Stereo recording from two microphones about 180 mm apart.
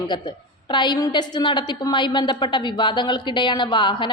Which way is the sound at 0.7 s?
25° left (ahead or behind).